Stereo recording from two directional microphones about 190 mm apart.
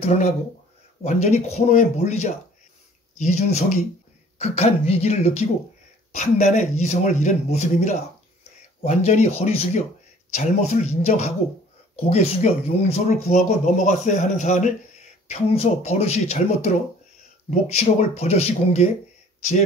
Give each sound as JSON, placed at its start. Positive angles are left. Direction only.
{"t": 0.0, "sound": "speech", "side_deg": 35}